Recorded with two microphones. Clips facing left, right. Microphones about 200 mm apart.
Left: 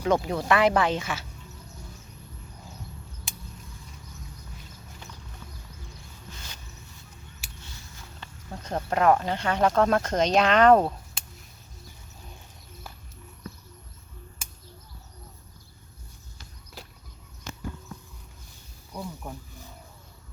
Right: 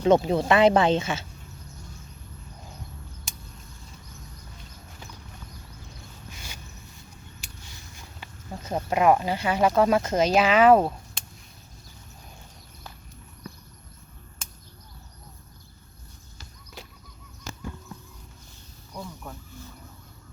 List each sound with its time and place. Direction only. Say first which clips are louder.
0.0 s speech: right 5 dB; 25° right (ahead or behind)
7.9 s speech: right 1 dB; 10° right (ahead or behind)
18.9 s wild animals: left 2 dB; 5° left (ahead or behind)